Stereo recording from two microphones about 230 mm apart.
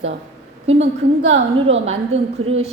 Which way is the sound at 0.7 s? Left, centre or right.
Right.